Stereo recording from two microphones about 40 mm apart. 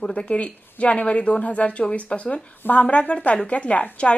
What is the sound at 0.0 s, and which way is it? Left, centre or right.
A woman's voice, left.